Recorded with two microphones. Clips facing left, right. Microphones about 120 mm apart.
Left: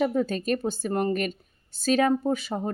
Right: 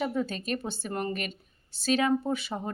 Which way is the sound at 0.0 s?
45° left (ahead or behind).